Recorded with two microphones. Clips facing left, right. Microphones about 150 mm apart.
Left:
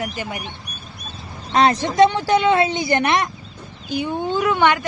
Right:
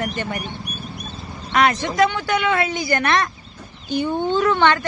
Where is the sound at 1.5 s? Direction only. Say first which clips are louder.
Left 2 dB; 30° left (ahead or behind).